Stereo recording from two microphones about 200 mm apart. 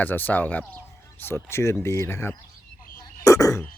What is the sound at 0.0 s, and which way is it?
Speech, 10° left (ahead or behind).